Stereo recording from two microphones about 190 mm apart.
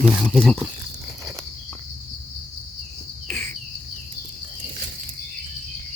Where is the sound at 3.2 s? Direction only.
5° left (ahead or behind).